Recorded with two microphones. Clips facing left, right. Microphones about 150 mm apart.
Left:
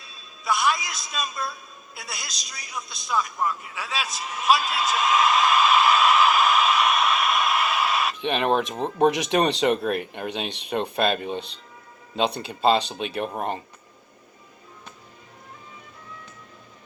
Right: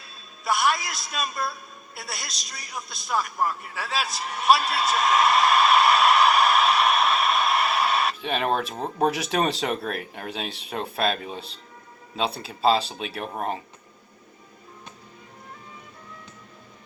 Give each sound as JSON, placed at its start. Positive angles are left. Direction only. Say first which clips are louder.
{"t": 0.4, "sound": "a man's voice", "louder": "even", "side_deg": 0}
{"t": 6.8, "sound": "a sound", "louder": "right 1 dB", "side_deg": -30}
{"t": 8.2, "sound": "a man's voice", "louder": "left 3 dB", "side_deg": -5}